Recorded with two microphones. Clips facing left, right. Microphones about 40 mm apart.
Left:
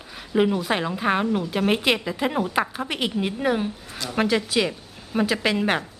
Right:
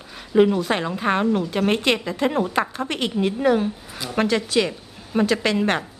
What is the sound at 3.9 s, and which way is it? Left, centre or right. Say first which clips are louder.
Speech: right 1 dB; centre.